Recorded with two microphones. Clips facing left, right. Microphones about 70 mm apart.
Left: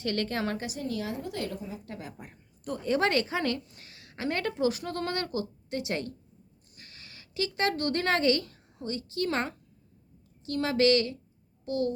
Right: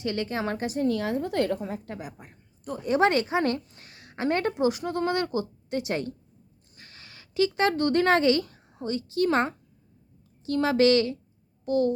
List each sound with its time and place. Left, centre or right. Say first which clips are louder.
0.0 s a woman's voice: right 2 dB; centre; by 1.8 s right
2.1 s speech: left 2 dB; centre
2.7 s a woman's voice: right 4 dB; right
6.7 s a sound: right 2 dB; right
9.1 s a child's voice: right 7 dB; right